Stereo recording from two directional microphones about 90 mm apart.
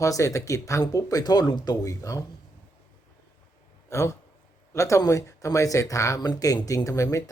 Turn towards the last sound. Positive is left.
turn(degrees=35)  # may be behind; listen again after turning